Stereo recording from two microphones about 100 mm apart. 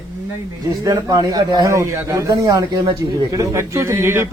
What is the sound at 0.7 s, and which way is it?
Speech, 35° right (ahead or behind).